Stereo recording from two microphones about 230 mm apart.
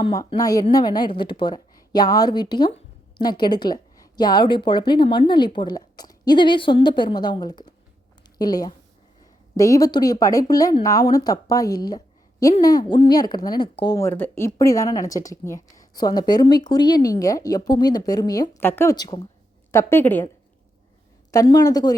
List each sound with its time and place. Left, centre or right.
0.0 s a woman's voice: centre